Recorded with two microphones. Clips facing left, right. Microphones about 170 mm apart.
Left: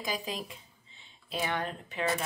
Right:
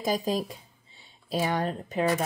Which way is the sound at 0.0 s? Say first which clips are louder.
Right 9 dB; 40° right (ahead or behind).